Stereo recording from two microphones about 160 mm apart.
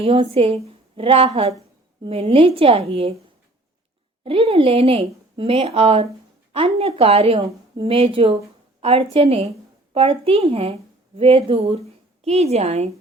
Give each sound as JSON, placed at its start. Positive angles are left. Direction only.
{"t": 0.0, "sound": "speech", "side_deg": -35}
{"t": 4.2, "sound": "a woman's voice", "side_deg": -35}